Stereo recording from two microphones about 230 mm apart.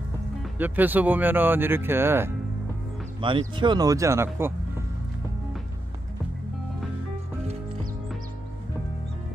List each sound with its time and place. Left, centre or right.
0.4 s speech: centre
3.2 s speech: right